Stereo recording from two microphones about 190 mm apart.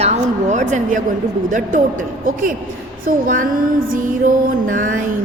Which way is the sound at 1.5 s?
45° right (ahead or behind).